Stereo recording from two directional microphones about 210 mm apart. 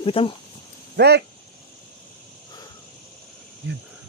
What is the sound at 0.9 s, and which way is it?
Speech, 50° right (ahead or behind).